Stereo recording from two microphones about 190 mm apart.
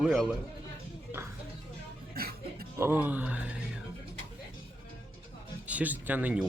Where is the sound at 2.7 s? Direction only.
10° right (ahead or behind).